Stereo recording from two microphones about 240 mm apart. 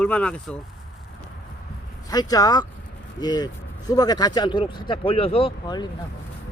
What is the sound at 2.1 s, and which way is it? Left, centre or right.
Speech, centre.